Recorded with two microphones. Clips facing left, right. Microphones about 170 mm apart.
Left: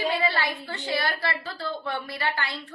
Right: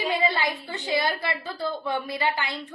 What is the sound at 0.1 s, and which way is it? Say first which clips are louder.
A woman's voice: right 1 dB; 15° right (ahead or behind).